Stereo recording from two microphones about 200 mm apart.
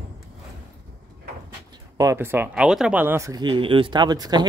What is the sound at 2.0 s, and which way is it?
Speech, 15° right (ahead or behind).